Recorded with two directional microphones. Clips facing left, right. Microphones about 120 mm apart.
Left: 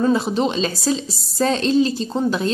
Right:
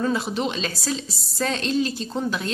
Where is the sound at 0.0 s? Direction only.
30° left (ahead or behind).